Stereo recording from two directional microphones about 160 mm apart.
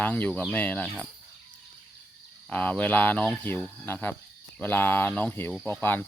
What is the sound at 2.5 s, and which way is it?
Speech, 10° left (ahead or behind).